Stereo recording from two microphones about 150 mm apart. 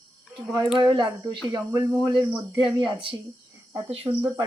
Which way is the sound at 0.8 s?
30° right (ahead or behind).